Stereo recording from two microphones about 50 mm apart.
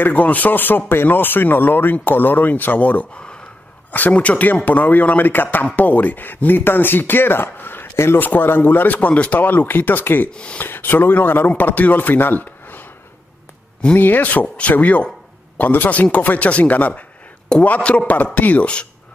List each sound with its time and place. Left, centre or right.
0.0 s speech: left
4.1 s a man's voice: left
8.2 s speech: left
10.3 s a man's voice: left
10.6 s speech: left
13.9 s a man's voice: left